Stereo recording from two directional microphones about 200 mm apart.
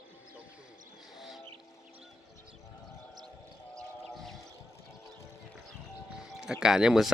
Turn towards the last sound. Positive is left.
turn(degrees=-5)  # may be behind; listen again after turning